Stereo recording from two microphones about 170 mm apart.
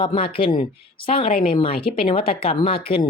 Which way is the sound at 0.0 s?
30° left (ahead or behind).